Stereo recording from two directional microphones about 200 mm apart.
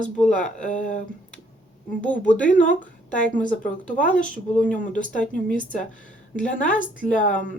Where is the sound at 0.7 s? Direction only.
40° left (ahead or behind).